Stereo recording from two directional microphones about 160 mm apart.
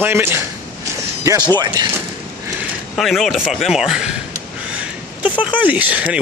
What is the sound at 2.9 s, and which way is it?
Speech, centre (ahead or behind).